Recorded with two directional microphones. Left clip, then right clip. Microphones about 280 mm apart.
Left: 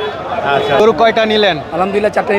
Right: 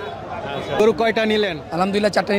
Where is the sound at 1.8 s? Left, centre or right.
Right.